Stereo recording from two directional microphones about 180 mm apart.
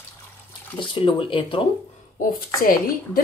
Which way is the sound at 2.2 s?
50° left (ahead or behind).